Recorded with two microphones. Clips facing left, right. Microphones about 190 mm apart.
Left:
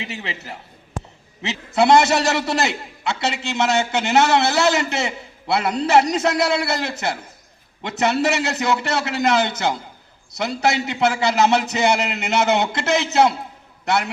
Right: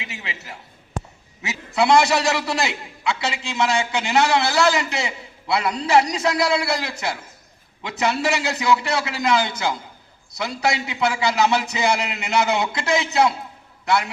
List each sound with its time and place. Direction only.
0.0 s a man's voice: 35° left (ahead or behind)
1.7 s a man's voice: 60° left (ahead or behind)